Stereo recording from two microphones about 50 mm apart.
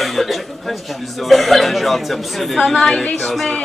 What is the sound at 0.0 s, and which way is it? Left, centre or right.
Speech, centre.